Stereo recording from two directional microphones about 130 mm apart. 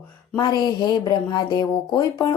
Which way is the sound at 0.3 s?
35° left (ahead or behind).